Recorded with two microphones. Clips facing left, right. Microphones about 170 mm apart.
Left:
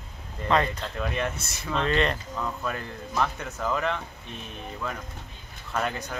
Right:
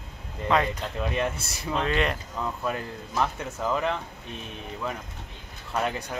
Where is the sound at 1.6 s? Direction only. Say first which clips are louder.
Left 1 dB; 5° right (ahead or behind).